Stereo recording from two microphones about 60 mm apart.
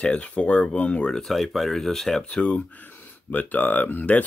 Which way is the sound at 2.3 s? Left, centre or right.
Centre.